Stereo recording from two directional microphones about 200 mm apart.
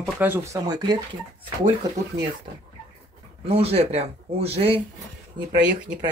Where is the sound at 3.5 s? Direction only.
30° right (ahead or behind).